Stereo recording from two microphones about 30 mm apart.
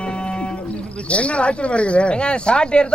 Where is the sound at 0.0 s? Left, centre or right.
Left.